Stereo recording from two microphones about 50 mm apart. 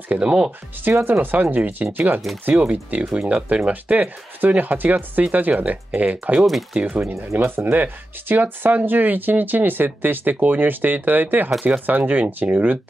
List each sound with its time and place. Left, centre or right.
0.1 s speech: right
3.2 s speech: centre
3.4 s speech: right
7.3 s speech: right